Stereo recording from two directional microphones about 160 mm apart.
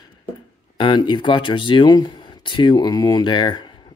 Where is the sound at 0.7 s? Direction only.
30° left (ahead or behind).